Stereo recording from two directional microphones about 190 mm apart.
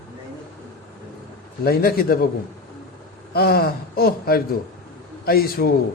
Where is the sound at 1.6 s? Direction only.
50° left (ahead or behind).